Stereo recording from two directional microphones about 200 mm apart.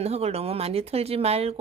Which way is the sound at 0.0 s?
30° right (ahead or behind).